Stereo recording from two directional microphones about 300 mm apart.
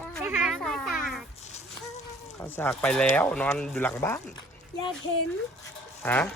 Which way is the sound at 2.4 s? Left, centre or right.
Centre.